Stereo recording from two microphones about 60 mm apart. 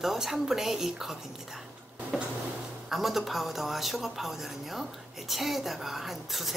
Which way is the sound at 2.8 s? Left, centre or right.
Centre.